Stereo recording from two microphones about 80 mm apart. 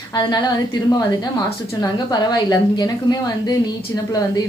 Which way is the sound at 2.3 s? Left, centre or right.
Left.